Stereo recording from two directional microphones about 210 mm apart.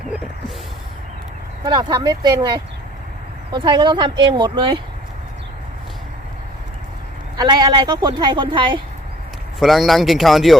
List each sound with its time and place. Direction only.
1.6 s a woman's voice: 20° right (ahead or behind)
7.3 s a woman's voice: 20° right (ahead or behind)
9.6 s speech: centre (ahead or behind)